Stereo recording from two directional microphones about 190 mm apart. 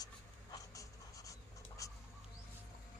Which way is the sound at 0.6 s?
15° left (ahead or behind).